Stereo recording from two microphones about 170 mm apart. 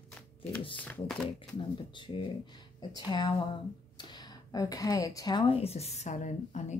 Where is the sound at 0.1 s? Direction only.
10° left (ahead or behind).